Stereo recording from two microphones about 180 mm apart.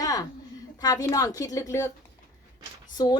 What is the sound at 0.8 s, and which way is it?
A woman's voice, 20° left (ahead or behind).